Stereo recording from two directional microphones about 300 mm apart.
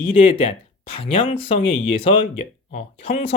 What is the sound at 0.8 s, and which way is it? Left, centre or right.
Speech, centre.